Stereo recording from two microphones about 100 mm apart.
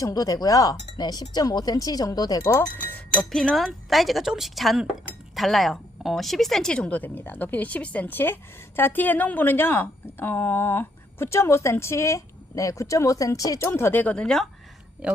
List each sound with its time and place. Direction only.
0.0 s speech: 40° left (ahead or behind)
2.7 s speech: 15° left (ahead or behind)
3.2 s a woman's voice: 5° left (ahead or behind)